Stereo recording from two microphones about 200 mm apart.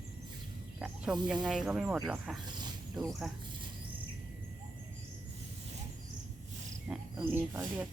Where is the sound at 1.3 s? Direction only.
5° right (ahead or behind).